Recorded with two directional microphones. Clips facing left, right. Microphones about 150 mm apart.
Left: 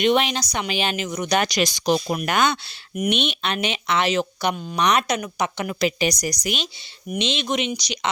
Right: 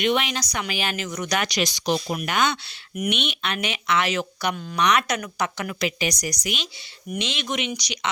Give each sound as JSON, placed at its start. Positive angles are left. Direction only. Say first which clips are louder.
{"t": 0.0, "sound": "speech", "louder": "left 4 dB", "side_deg": 30}
{"t": 1.4, "sound": "speech", "louder": "left 3 dB", "side_deg": 40}